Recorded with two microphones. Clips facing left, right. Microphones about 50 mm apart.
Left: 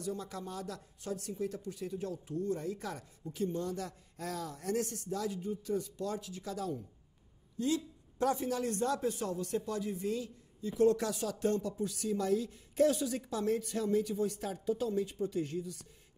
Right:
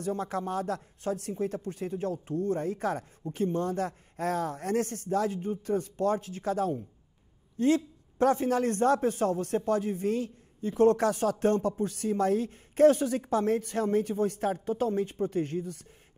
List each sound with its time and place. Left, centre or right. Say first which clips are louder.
0.0 s a man's voice: right 8 dB; right